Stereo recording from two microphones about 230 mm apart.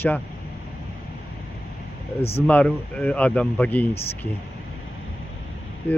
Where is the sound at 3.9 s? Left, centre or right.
Left.